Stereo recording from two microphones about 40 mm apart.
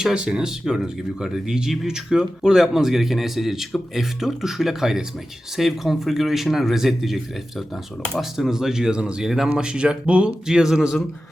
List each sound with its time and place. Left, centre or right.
0.0 s a man's voice: centre
8.2 s a man's voice: centre
9.5 s speech: right
10.4 s a man's voice: centre